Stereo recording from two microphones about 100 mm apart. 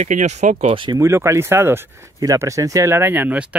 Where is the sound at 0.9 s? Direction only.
30° right (ahead or behind).